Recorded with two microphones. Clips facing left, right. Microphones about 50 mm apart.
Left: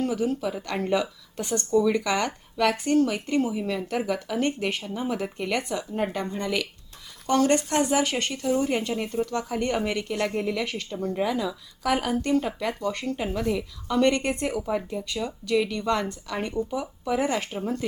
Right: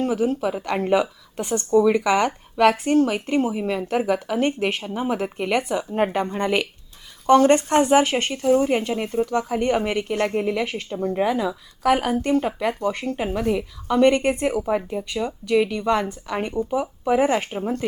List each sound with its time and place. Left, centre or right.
0.0 s a woman's voice: right
5.9 s a woman's voice: right